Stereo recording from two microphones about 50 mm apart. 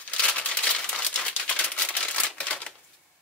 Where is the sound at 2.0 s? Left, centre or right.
Centre.